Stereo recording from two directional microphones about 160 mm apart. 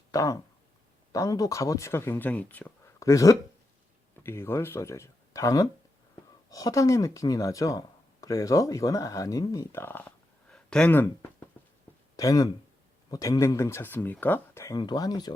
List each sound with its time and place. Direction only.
0.1 s speech: 20° left (ahead or behind)